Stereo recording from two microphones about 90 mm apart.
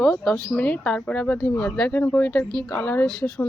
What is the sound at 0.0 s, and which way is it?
Speech, 5° left (ahead or behind).